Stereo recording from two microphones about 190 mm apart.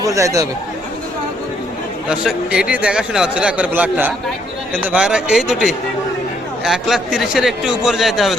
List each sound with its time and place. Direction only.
0.0 s speech: 15° right (ahead or behind)
2.0 s a man's voice: 5° right (ahead or behind)